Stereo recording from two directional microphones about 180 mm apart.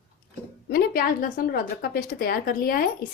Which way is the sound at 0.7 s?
55° left (ahead or behind).